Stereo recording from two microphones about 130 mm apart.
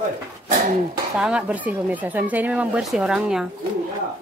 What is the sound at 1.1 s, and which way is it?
Speech, 5° right (ahead or behind).